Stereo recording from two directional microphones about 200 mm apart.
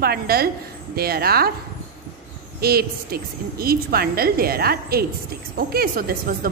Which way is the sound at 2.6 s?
50° right (ahead or behind).